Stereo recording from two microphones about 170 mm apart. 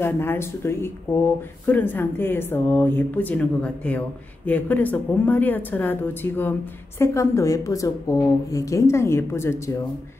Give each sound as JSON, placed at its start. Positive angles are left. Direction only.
{"t": 0.0, "sound": "speech", "side_deg": 15}